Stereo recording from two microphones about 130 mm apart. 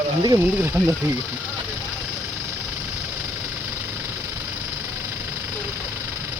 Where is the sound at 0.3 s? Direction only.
20° right (ahead or behind).